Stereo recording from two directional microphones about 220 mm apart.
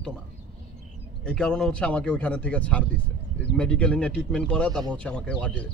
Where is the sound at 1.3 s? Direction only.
5° left (ahead or behind).